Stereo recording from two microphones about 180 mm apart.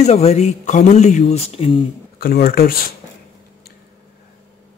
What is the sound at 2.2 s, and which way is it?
Speech, 55° left (ahead or behind).